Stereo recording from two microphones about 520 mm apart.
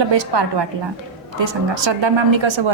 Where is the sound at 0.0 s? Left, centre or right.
Right.